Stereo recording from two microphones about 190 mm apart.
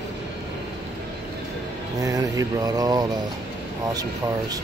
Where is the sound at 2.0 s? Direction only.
20° right (ahead or behind).